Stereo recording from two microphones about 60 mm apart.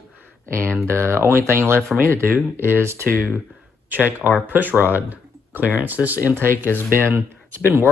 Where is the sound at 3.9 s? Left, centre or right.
Right.